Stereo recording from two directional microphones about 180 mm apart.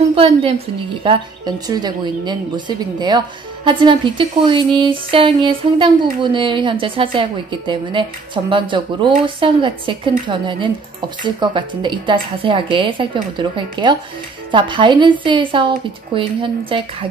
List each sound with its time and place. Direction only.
0.1 s a woman's voice: 30° right (ahead or behind)